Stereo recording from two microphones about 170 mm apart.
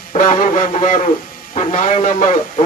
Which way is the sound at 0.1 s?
50° left (ahead or behind).